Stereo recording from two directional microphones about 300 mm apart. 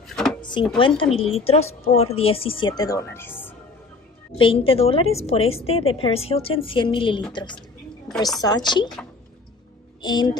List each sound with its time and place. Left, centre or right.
0.1 s drawer open or close: centre
0.4 s drawer open or close: centre
0.7 s a woman's voice: centre
4.4 s a woman's voice: centre
10.0 s a woman's voice: centre